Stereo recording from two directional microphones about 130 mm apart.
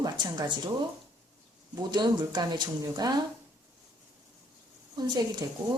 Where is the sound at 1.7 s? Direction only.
35° right (ahead or behind).